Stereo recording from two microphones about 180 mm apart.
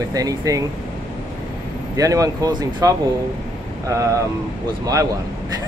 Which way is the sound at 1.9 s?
20° right (ahead or behind).